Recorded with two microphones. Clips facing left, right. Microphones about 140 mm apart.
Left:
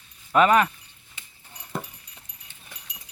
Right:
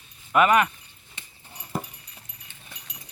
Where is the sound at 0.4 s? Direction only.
30° left (ahead or behind).